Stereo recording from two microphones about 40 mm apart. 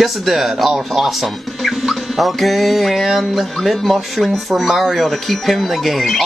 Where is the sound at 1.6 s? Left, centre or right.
Centre.